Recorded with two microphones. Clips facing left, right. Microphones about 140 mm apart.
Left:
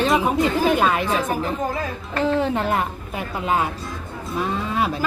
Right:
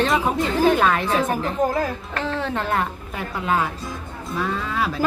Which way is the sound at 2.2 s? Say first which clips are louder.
Left 5 dB; 15° left (ahead or behind).